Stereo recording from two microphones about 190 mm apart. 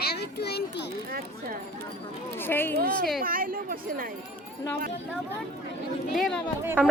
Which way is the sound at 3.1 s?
50° right (ahead or behind).